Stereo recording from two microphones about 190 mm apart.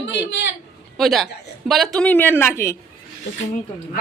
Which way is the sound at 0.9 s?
Centre (ahead or behind).